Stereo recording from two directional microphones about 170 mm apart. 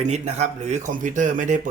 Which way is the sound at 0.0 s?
40° right (ahead or behind).